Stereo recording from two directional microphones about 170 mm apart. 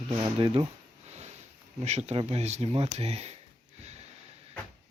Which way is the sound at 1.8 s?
40° right (ahead or behind).